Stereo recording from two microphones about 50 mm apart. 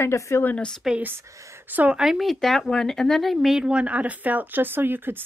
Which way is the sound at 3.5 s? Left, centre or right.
Centre.